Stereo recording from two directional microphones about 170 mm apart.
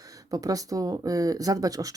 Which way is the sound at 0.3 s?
20° right (ahead or behind).